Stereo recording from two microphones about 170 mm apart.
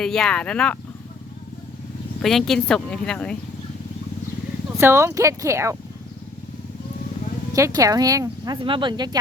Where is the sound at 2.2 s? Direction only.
Centre (ahead or behind).